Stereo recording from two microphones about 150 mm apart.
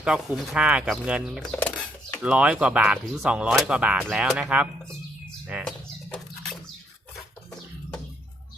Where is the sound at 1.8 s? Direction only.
5° right (ahead or behind).